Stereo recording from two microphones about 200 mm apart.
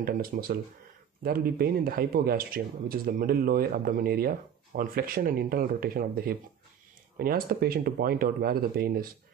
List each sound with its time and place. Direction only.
0.0 s speech: 50° right (ahead or behind)